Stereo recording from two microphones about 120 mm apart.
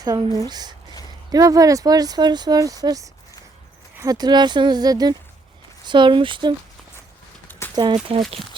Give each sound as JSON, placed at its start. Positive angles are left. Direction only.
{"t": 0.0, "sound": "speech", "side_deg": -30}
{"t": 7.8, "sound": "speech", "side_deg": -35}